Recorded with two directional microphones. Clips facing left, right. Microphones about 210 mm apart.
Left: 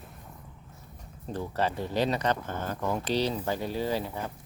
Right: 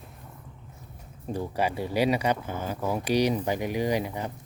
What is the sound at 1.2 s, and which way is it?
Speech, 10° right (ahead or behind).